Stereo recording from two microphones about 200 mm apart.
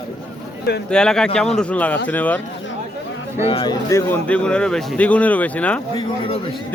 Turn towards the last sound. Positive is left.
turn(degrees=5)  # may be behind; listen again after turning